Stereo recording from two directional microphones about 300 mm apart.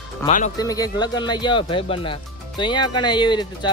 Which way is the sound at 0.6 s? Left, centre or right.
Centre.